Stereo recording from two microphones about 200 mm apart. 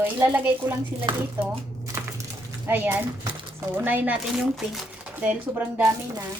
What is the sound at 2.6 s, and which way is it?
Speech, 10° right (ahead or behind).